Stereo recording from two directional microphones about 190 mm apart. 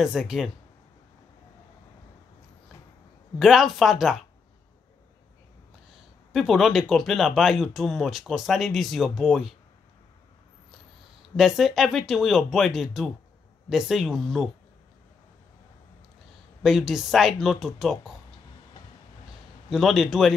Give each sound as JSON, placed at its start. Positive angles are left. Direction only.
{"t": 0.0, "sound": "speech", "side_deg": -5}
{"t": 3.3, "sound": "speech", "side_deg": 0}
{"t": 6.3, "sound": "speech", "side_deg": 0}
{"t": 11.3, "sound": "speech", "side_deg": 0}
{"t": 16.6, "sound": "speech", "side_deg": 0}
{"t": 19.7, "sound": "speech", "side_deg": 0}